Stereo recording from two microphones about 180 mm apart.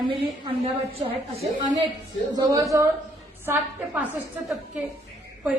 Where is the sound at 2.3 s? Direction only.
20° right (ahead or behind).